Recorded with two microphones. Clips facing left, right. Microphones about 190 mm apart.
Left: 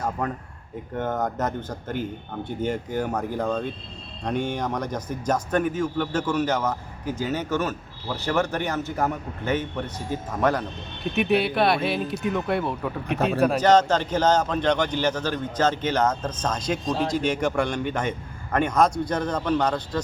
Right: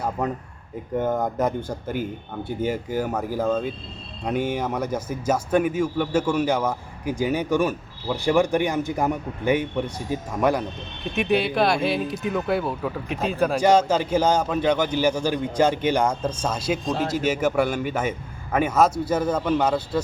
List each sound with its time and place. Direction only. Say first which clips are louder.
0.9 s speech: right 3 dB; 10° right (ahead or behind)
11.1 s a man's voice: even; centre (ahead or behind)